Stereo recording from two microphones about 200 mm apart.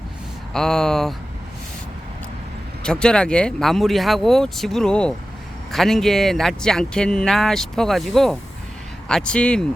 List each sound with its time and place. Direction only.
0.5 s speech: centre (ahead or behind)
2.8 s speech: 5° left (ahead or behind)